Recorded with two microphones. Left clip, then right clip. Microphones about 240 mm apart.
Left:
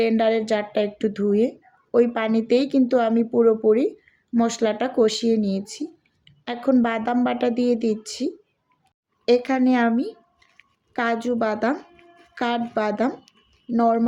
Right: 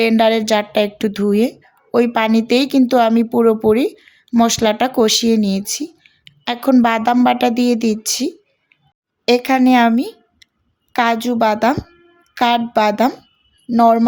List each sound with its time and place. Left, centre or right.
0.0 s speech: right